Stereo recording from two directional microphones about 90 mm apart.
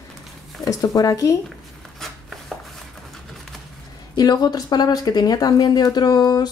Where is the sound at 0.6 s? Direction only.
40° left (ahead or behind).